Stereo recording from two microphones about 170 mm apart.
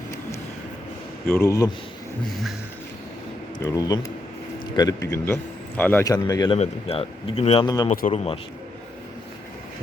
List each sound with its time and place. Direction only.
1.3 s a man's voice: 15° left (ahead or behind)
3.6 s a man's voice: 20° left (ahead or behind)
6.1 s speech: 20° left (ahead or behind)
6.6 s speech: 35° left (ahead or behind)
7.9 s speech: 40° left (ahead or behind)